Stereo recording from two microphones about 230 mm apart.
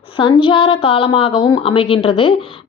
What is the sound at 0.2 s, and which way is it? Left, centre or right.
Speech, left.